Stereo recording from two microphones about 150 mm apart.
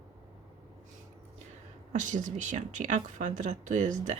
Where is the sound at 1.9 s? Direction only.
55° right (ahead or behind).